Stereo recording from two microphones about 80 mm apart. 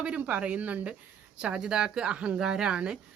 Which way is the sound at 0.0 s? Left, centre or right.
Centre.